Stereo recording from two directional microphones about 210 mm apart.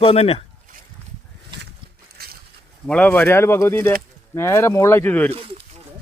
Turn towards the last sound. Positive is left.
turn(degrees=-25)  # may be behind; listen again after turning